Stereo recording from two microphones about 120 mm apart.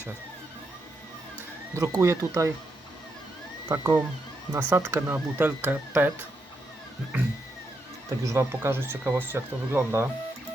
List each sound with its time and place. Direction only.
1.7 s speech: 25° right (ahead or behind)
3.7 s speech: 15° right (ahead or behind)
8.2 s speech: 25° right (ahead or behind)